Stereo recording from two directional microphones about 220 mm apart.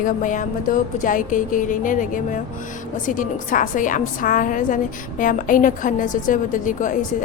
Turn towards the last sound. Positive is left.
turn(degrees=35)  # may be behind; listen again after turning